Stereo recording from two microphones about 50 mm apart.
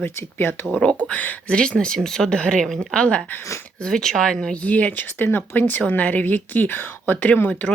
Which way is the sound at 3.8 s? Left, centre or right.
Centre.